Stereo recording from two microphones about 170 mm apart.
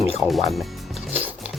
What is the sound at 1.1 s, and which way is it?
Music, 10° right (ahead or behind).